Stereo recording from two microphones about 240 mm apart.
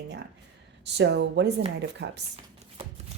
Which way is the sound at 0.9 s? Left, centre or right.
Right.